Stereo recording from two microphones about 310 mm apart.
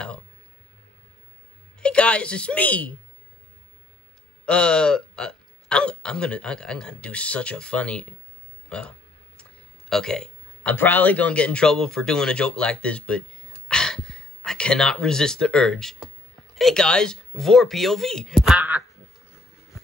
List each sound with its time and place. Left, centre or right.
1.8 s speech: centre
4.5 s speech: centre
8.6 s a sound: centre
9.4 s speech: centre